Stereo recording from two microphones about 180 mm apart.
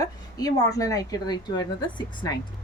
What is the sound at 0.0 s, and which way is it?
A woman's voice, 20° left (ahead or behind).